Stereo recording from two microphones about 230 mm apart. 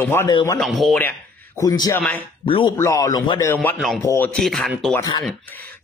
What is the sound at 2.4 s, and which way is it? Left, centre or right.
Speech, left.